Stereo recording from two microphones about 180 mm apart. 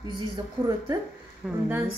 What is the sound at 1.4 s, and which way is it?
Speech, centre (ahead or behind).